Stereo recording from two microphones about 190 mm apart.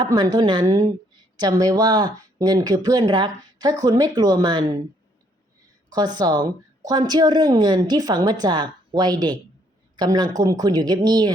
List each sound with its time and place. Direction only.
0.0 s a woman's voice: 20° right (ahead or behind)
5.9 s a woman's voice: 20° right (ahead or behind)